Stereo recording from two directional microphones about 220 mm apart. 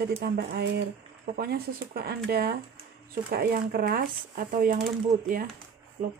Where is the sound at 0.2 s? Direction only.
45° right (ahead or behind).